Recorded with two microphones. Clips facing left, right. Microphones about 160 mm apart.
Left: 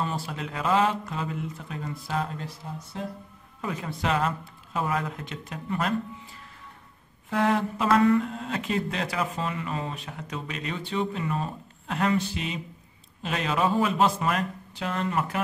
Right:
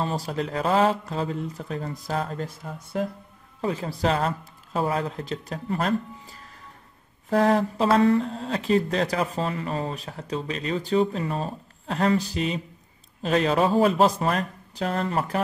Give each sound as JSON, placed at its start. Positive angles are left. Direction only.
{"t": 0.0, "sound": "speech", "side_deg": -40}
{"t": 3.6, "sound": "speech", "side_deg": -30}
{"t": 7.2, "sound": "speech", "side_deg": -35}